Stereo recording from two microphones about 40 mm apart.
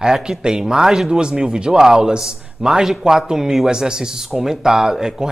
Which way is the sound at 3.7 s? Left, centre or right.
Centre.